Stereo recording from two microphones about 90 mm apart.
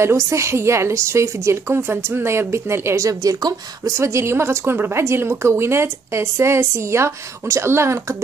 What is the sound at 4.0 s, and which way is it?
A woman's voice, 30° right (ahead or behind).